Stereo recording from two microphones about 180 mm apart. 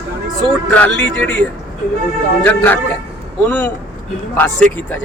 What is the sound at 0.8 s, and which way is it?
Speech, 10° left (ahead or behind).